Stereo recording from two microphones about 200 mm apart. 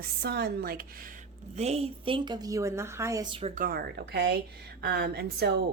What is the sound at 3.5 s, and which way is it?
A woman's voice, 45° right (ahead or behind).